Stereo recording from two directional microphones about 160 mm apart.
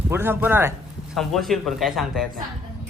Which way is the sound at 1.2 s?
Centre (ahead or behind).